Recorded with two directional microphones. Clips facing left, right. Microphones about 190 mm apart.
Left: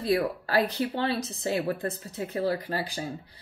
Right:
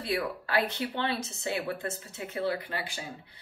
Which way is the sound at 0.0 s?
35° left (ahead or behind).